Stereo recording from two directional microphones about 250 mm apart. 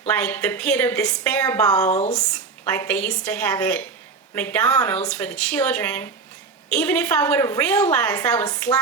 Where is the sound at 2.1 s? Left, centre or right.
Centre.